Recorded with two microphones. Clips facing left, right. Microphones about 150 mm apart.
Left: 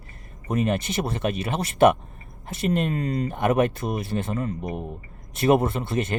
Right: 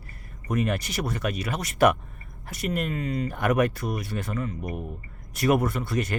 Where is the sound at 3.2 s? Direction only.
25° left (ahead or behind).